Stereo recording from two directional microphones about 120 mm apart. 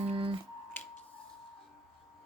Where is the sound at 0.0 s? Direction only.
55° right (ahead or behind).